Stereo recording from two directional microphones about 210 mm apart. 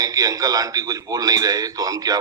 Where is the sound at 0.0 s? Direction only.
15° right (ahead or behind).